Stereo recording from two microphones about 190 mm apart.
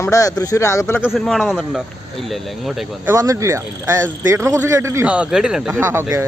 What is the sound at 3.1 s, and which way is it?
A man's voice, 15° right (ahead or behind).